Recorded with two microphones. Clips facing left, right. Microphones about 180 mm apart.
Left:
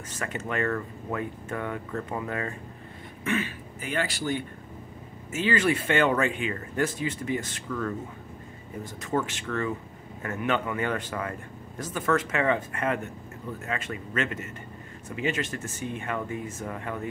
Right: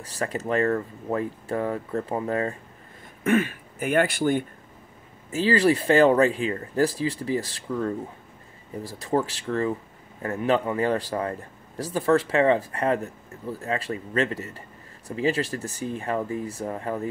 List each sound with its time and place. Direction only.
0.0 s speech: 35° right (ahead or behind)
3.3 s speech: 50° right (ahead or behind)
5.3 s speech: 35° right (ahead or behind)